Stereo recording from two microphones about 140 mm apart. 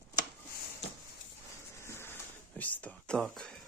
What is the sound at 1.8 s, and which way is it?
Printer, 20° left (ahead or behind).